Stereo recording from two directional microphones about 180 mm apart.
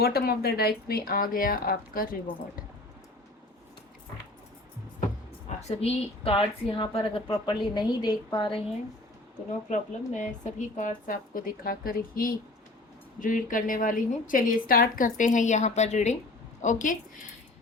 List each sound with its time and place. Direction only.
0.0 s speech: 60° left (ahead or behind)
5.5 s a woman's voice: 40° left (ahead or behind)
9.6 s a woman's voice: 45° left (ahead or behind)